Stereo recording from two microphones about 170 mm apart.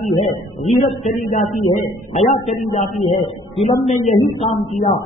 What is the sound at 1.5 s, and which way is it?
A man's voice, 45° left (ahead or behind).